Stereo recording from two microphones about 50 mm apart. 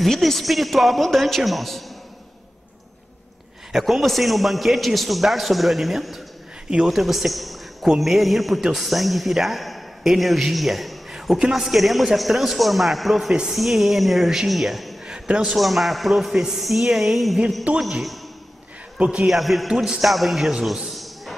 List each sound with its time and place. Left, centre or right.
0.0 s a man's voice: centre
3.7 s a man's voice: centre
15.0 s a sound: centre
15.5 s a man's voice: centre
18.9 s a man's voice: right
19.2 s a man's voice: centre
19.7 s a man's voice: centre